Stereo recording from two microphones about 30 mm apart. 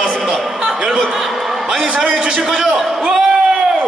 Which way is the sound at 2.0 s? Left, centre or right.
Right.